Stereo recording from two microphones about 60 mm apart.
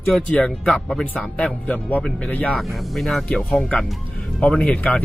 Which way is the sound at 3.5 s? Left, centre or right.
Centre.